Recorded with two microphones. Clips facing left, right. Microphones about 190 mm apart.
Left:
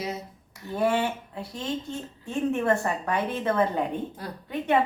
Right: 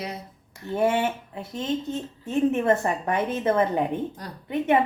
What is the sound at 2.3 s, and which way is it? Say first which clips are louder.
A woman's voice: right 3 dB; 20° right (ahead or behind).